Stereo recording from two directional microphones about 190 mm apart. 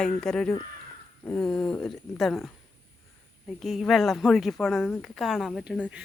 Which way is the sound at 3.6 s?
Centre (ahead or behind).